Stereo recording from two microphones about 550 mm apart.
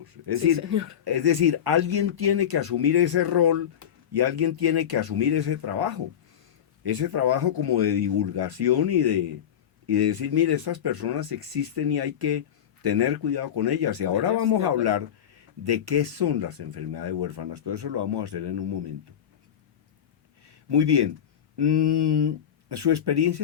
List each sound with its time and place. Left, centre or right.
0.3 s speech: right
20.5 s speech: right